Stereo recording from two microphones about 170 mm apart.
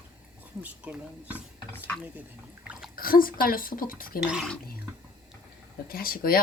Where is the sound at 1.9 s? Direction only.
10° left (ahead or behind).